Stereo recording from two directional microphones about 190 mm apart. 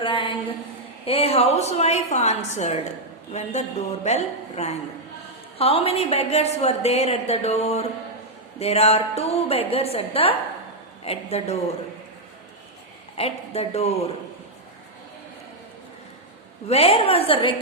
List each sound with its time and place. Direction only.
0.0 s a sound: 25° left (ahead or behind)
1.0 s a woman's voice: 30° left (ahead or behind)
13.1 s a woman's voice: 35° left (ahead or behind)
16.6 s a woman's voice: 35° left (ahead or behind)